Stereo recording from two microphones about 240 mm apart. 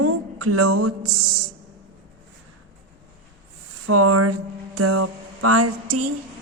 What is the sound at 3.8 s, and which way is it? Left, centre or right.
Speech, right.